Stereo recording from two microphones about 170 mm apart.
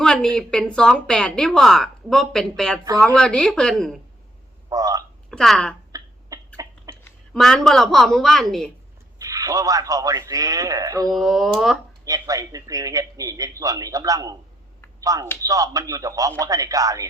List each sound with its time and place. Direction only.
0.0 s a woman's voice: 5° left (ahead or behind)
4.7 s speech: 20° right (ahead or behind)
5.3 s speech: 5° left (ahead or behind)
5.9 s a sound: 20° right (ahead or behind)
6.9 s a woman's voice: 5° left (ahead or behind)
9.1 s a man's voice: 20° right (ahead or behind)
11.1 s a woman's voice: centre (ahead or behind)
12.0 s a man's voice: 20° right (ahead or behind)